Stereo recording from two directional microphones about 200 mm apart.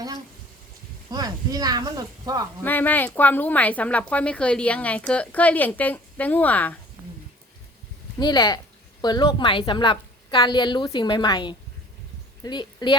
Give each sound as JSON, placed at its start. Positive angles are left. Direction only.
{"t": 1.1, "sound": "speech", "side_deg": -20}
{"t": 2.6, "sound": "speech", "side_deg": 10}
{"t": 8.2, "sound": "a woman's voice", "side_deg": 20}